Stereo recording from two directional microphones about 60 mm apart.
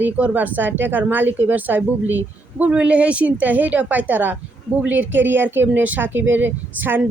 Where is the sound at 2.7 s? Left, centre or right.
Centre.